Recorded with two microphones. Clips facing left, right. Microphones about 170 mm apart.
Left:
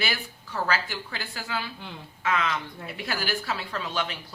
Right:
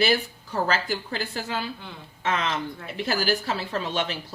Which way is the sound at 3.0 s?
35° right (ahead or behind).